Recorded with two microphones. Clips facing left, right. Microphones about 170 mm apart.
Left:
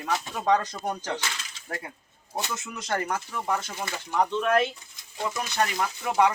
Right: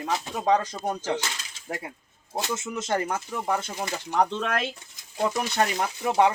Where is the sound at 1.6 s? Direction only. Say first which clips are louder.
Right 3 dB; 20° right (ahead or behind).